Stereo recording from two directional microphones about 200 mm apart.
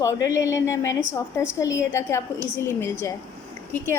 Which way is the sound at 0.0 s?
15° left (ahead or behind).